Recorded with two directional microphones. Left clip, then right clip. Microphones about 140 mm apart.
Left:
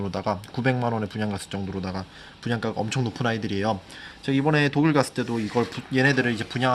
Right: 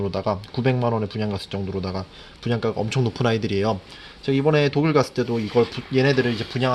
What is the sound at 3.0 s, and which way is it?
Speech, 40° right (ahead or behind).